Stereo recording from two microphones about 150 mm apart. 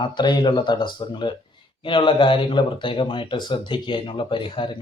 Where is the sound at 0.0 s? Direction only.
30° left (ahead or behind).